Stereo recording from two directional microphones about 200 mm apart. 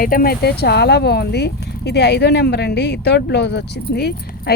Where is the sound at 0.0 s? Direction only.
45° left (ahead or behind).